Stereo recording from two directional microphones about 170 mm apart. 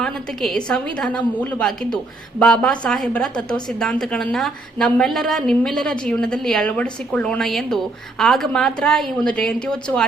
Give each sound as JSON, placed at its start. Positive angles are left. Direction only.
{"t": 0.0, "sound": "a woman's voice", "side_deg": 5}